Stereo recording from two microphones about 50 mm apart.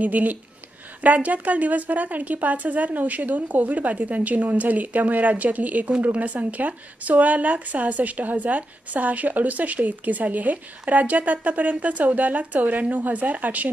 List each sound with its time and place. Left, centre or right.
0.0 s a woman's voice: right